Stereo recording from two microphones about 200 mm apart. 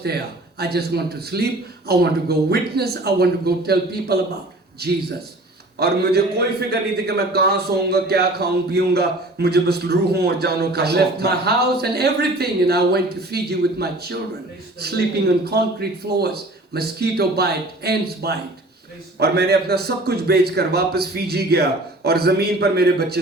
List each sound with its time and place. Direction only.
0.0 s a man's voice: 55° right (ahead or behind)